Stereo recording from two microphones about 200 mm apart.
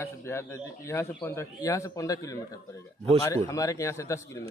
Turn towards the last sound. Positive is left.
turn(degrees=15)  # may be behind; listen again after turning